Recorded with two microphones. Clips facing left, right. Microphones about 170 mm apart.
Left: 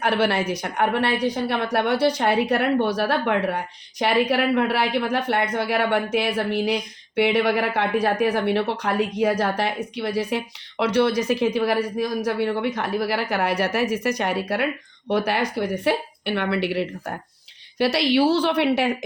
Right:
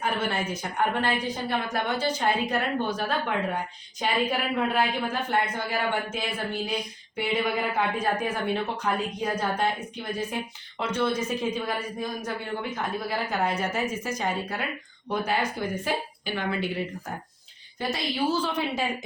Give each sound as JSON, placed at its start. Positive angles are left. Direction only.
{"t": 0.0, "sound": "a woman's voice", "side_deg": 75}